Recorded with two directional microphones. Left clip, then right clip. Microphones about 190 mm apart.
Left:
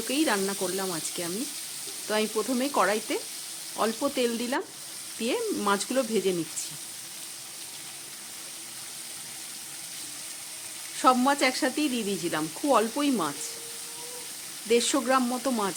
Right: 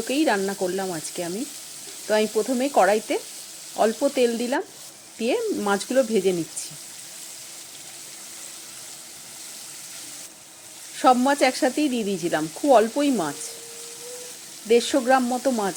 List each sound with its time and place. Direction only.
0.1 s sizzle: 10° right (ahead or behind)
11.0 s sizzle: 15° right (ahead or behind)
14.7 s sizzle: 10° right (ahead or behind)